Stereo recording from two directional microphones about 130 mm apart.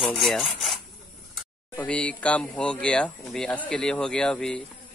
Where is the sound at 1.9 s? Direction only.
10° left (ahead or behind).